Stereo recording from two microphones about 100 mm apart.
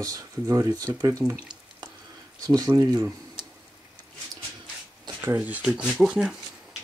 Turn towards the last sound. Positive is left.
turn(degrees=-5)  # may be behind; listen again after turning